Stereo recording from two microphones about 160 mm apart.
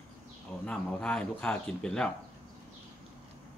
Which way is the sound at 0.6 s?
5° left (ahead or behind).